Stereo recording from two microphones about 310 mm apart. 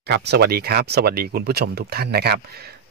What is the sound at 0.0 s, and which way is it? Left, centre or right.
Speech, right.